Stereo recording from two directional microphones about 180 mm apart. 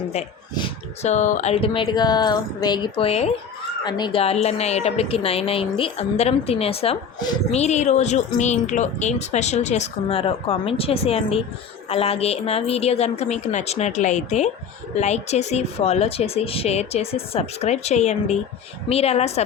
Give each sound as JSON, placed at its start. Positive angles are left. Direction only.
{"t": 1.0, "sound": "speech", "side_deg": 40}
{"t": 3.8, "sound": "speech", "side_deg": 25}
{"t": 7.5, "sound": "speech", "side_deg": 40}